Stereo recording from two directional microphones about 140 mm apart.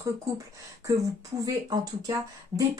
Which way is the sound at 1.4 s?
25° right (ahead or behind).